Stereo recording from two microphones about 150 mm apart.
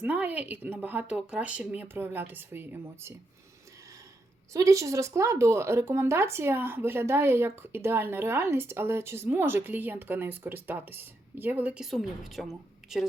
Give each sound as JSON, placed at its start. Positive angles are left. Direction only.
{"t": 0.0, "sound": "speech", "side_deg": -10}
{"t": 4.5, "sound": "speech", "side_deg": -20}